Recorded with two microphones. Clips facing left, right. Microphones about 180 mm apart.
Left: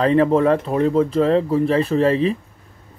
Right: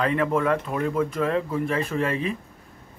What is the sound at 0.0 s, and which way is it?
Speech, 30° left (ahead or behind).